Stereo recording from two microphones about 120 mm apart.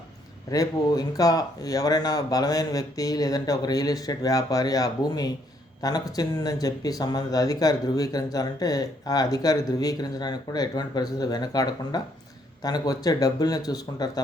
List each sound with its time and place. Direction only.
0.5 s speech: 30° left (ahead or behind)